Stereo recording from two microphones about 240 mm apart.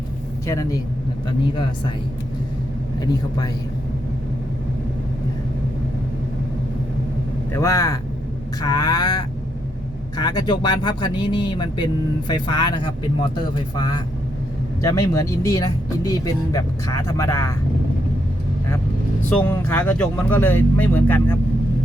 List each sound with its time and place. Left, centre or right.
0.4 s speech: centre
7.5 s speech: centre
19.5 s speech: centre